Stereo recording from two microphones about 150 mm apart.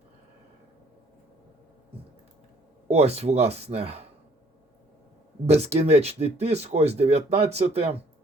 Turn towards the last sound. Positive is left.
turn(degrees=-45)  # may be behind; listen again after turning